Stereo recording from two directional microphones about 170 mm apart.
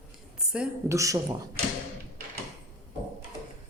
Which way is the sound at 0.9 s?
20° right (ahead or behind).